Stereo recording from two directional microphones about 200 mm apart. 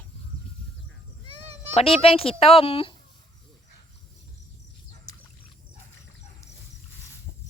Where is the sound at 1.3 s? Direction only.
30° right (ahead or behind).